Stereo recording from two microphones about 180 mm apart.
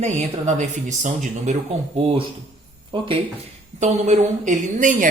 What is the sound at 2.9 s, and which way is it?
Speech, 25° right (ahead or behind).